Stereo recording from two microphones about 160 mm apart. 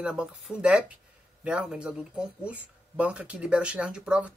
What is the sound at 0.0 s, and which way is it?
Speech, 5° right (ahead or behind).